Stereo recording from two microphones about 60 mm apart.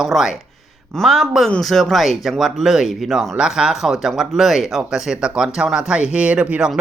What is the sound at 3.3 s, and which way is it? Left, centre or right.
Speech, centre.